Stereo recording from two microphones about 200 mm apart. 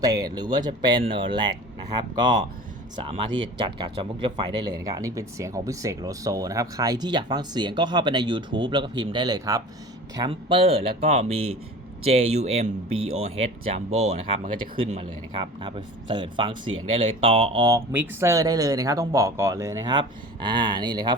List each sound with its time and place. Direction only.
0.0 s speech: 20° right (ahead or behind)